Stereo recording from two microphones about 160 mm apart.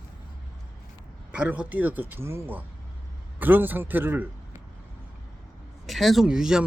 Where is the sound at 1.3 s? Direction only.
10° right (ahead or behind).